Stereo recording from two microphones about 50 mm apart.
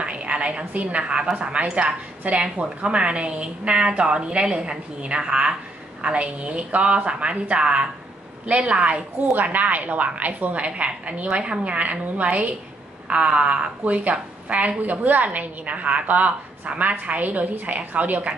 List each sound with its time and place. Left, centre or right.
0.0 s a woman's voice: right